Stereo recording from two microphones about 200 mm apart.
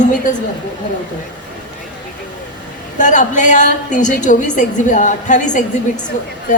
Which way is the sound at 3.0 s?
40° left (ahead or behind).